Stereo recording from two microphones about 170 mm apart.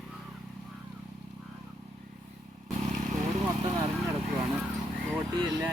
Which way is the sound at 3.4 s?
20° right (ahead or behind).